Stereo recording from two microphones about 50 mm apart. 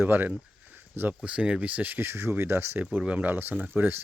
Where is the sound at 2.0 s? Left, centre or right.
Right.